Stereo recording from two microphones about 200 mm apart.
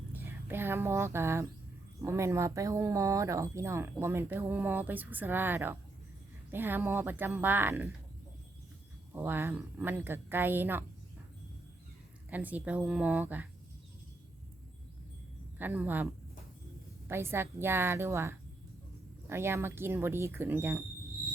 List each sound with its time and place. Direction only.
0.1 s speech: 10° right (ahead or behind)
9.1 s speech: 10° right (ahead or behind)
12.3 s speech: 10° right (ahead or behind)
15.5 s speech: 10° right (ahead or behind)
17.1 s speech: 10° right (ahead or behind)